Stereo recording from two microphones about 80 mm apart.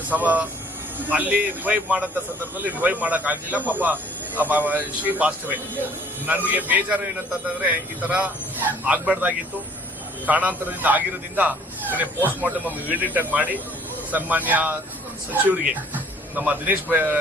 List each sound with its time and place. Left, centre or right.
0.1 s a man's voice: centre